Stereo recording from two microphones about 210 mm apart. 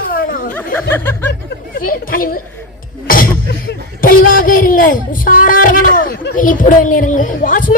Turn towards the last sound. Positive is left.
turn(degrees=40)  # may be behind; listen again after turning